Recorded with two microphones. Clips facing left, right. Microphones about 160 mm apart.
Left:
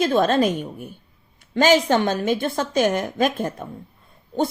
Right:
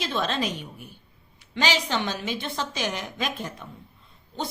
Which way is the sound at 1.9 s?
50° left (ahead or behind).